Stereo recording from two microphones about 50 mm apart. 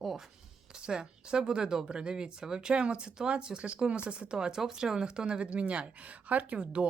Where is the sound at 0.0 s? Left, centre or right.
Centre.